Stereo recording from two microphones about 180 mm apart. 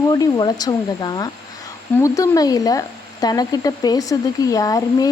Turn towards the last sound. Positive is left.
turn(degrees=20)  # may be behind; listen again after turning